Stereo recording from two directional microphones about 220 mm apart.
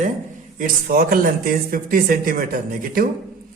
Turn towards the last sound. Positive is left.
turn(degrees=-40)  # may be behind; listen again after turning